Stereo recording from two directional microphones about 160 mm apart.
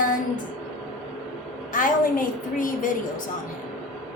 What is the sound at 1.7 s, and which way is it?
A woman's voice, 55° left (ahead or behind).